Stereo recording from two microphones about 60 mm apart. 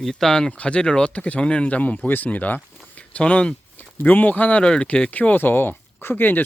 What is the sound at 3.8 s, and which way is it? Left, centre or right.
Speech, left.